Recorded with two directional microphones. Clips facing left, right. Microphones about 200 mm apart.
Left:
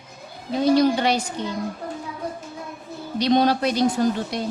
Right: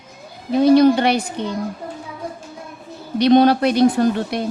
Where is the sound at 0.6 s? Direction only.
60° right (ahead or behind).